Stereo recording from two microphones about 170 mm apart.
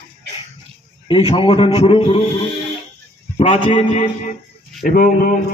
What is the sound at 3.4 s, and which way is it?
Speech, 40° left (ahead or behind).